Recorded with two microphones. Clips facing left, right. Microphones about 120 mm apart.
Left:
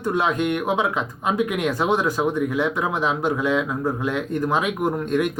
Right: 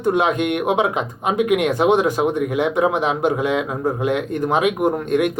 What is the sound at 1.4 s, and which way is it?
Speech, 65° right (ahead or behind).